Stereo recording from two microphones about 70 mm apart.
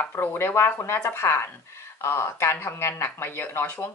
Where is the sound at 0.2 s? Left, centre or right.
Left.